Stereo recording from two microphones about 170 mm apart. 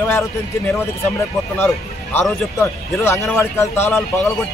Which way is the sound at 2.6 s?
15° left (ahead or behind).